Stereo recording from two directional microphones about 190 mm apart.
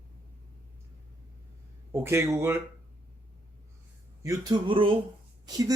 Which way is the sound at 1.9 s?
15° right (ahead or behind).